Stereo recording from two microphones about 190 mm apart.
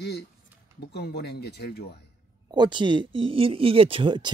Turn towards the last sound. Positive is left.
turn(degrees=-25)  # may be behind; listen again after turning